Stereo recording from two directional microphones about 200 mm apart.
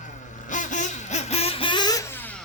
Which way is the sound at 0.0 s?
40° left (ahead or behind).